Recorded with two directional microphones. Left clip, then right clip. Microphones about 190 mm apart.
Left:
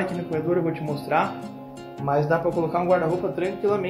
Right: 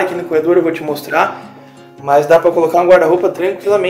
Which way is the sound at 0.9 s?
15° right (ahead or behind).